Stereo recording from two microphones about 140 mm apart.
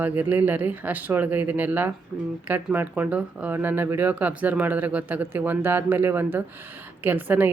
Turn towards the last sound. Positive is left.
turn(degrees=-15)  # may be behind; listen again after turning